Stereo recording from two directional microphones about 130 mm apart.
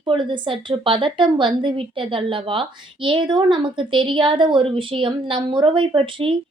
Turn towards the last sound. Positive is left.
turn(degrees=-40)  # may be behind; listen again after turning